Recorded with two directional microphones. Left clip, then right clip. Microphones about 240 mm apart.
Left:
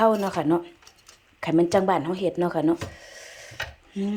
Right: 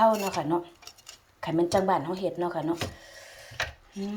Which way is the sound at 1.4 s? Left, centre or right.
Centre.